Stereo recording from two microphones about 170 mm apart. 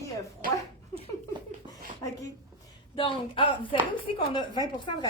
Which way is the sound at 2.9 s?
30° left (ahead or behind).